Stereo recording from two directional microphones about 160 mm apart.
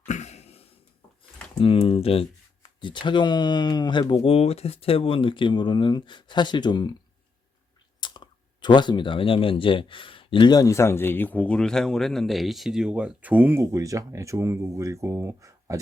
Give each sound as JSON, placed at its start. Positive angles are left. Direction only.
{"t": 0.0, "sound": "a sound", "side_deg": 45}
{"t": 1.5, "sound": "speech", "side_deg": 35}
{"t": 8.0, "sound": "speech", "side_deg": 30}